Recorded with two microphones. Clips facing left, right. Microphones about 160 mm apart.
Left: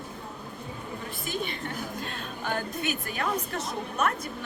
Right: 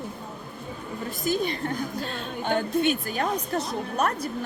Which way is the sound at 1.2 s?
40° right (ahead or behind).